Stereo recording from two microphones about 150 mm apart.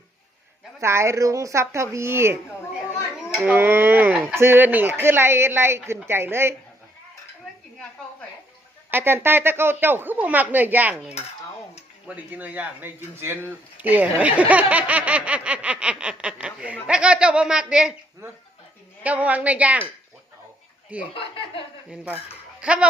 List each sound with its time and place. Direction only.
0.8 s a woman's voice: 20° right (ahead or behind)
8.9 s speech: 15° right (ahead or behind)
19.0 s speech: 10° right (ahead or behind)
20.9 s speech: 10° right (ahead or behind)